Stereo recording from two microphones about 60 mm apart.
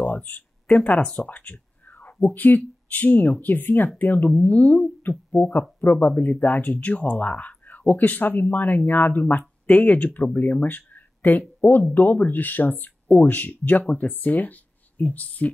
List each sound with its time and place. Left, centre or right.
0.0 s a sound: left
0.7 s speech: left
5.3 s speech: left